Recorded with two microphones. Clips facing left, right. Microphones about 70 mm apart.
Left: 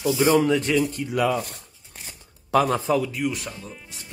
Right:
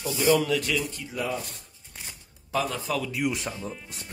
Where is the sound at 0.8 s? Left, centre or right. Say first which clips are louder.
Left 9 dB; left.